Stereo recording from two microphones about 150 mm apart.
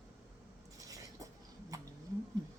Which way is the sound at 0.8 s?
25° right (ahead or behind).